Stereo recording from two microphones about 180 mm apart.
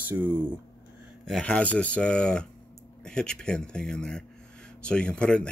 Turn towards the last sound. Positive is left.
turn(degrees=5)  # may be behind; listen again after turning